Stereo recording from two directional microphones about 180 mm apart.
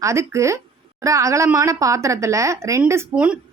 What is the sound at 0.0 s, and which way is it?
A woman's voice, 15° right (ahead or behind).